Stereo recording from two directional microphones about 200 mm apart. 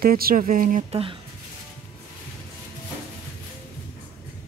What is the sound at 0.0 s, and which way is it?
Speech, 50° right (ahead or behind).